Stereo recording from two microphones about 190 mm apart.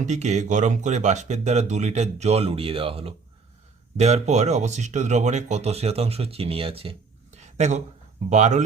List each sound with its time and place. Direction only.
0.0 s speech: 35° right (ahead or behind)